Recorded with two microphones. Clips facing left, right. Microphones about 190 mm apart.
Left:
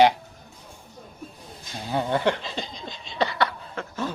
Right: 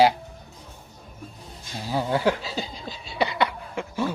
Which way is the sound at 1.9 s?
5° right (ahead or behind).